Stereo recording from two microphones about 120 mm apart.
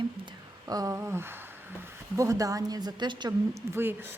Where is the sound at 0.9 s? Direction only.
20° right (ahead or behind); by 3.3 s 40° right (ahead or behind).